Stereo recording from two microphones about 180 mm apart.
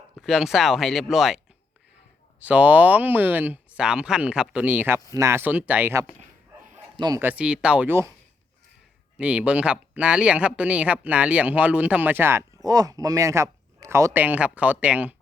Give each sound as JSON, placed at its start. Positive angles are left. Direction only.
{"t": 0.2, "sound": "speech", "side_deg": 0}
{"t": 2.4, "sound": "speech", "side_deg": -5}
{"t": 6.9, "sound": "speech", "side_deg": -25}
{"t": 7.2, "sound": "speech", "side_deg": -10}
{"t": 9.1, "sound": "speech", "side_deg": -5}